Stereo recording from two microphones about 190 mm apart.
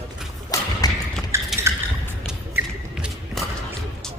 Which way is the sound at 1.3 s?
15° right (ahead or behind).